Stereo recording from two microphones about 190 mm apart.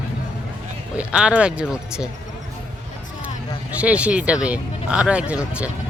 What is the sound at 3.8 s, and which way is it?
Speech, 5° right (ahead or behind).